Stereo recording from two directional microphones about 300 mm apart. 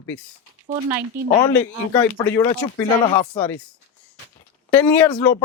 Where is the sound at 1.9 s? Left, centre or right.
Centre.